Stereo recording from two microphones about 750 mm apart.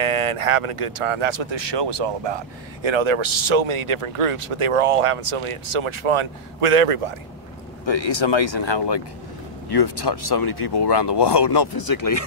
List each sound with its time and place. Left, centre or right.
0.0 s speech: right
7.8 s speech: left